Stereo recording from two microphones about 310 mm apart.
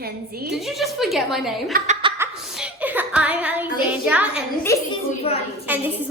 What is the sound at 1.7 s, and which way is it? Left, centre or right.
Chuckle, right.